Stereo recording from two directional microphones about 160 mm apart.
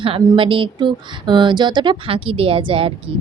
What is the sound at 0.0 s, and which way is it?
Speech, 35° right (ahead or behind).